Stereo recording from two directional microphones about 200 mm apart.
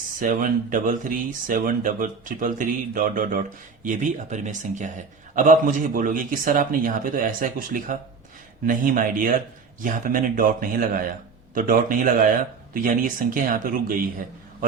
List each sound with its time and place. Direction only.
0.2 s speech: 40° right (ahead or behind)